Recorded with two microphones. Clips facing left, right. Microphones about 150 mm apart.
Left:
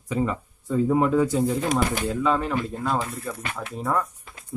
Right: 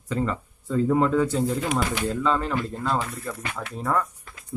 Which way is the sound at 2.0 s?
10° left (ahead or behind).